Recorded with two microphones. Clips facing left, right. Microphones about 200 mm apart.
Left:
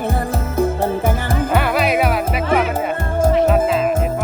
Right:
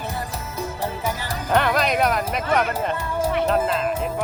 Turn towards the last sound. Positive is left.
turn(degrees=5)  # may be behind; listen again after turning